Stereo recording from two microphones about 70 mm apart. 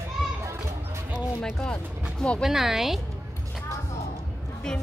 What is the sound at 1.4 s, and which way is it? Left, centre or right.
Speech, centre.